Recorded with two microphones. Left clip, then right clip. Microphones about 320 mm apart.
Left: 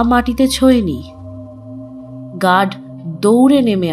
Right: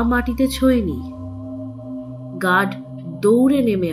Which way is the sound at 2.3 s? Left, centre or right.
Left.